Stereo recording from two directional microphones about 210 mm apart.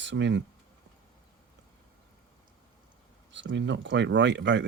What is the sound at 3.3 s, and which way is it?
Speech, 60° right (ahead or behind).